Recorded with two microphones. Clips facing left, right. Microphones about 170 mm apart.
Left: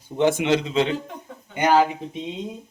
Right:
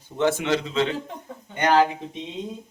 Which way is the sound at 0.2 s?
20° left (ahead or behind).